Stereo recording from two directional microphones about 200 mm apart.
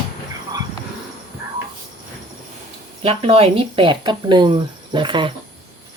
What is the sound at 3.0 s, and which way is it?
Speech, 30° right (ahead or behind).